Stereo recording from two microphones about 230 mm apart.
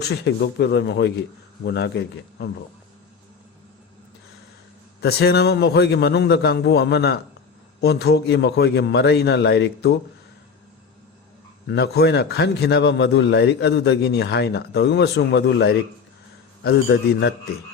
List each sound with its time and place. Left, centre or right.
0.0 s a man's voice: left
4.9 s a man's voice: left
11.6 s a man's voice: left